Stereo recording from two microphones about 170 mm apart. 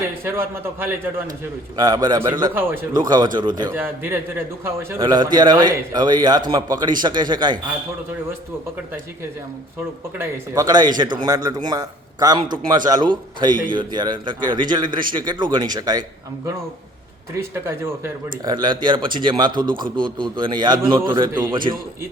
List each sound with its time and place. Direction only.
0.3 s a man's voice: 15° right (ahead or behind)
1.7 s a man's voice: 20° right (ahead or behind)
2.9 s a man's voice: 25° right (ahead or behind)
3.7 s a man's voice: 10° right (ahead or behind)
5.0 s a man's voice: 25° right (ahead or behind)
10.2 s a man's voice: 20° right (ahead or behind)
13.5 s a man's voice: 55° right (ahead or behind)
13.7 s a man's voice: 25° right (ahead or behind)
17.3 s a man's voice: 15° right (ahead or behind)
18.4 s a man's voice: 25° right (ahead or behind)